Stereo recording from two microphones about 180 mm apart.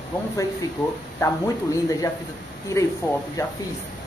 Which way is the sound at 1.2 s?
20° left (ahead or behind).